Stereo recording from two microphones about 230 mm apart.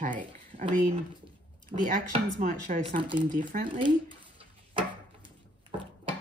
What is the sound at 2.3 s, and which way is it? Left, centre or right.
Speech, right.